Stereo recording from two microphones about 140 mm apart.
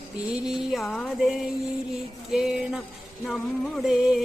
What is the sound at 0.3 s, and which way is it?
Music, 5° right (ahead or behind).